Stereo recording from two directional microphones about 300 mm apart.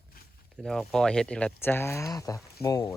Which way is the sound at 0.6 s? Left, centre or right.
Centre.